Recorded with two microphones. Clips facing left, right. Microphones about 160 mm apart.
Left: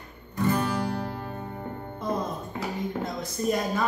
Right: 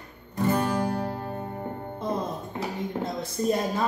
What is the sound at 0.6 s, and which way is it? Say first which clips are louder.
Music: right 2 dB; 45° right (ahead or behind).